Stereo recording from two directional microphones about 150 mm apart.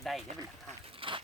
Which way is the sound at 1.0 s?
35° right (ahead or behind).